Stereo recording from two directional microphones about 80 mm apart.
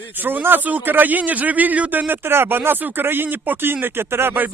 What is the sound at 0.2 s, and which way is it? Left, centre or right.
A man's voice, right.